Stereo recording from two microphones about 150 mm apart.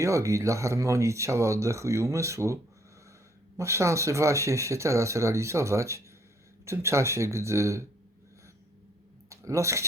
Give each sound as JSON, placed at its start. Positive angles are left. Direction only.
{"t": 0.0, "sound": "speech", "side_deg": -20}
{"t": 3.6, "sound": "speech", "side_deg": -20}
{"t": 9.3, "sound": "speech", "side_deg": -20}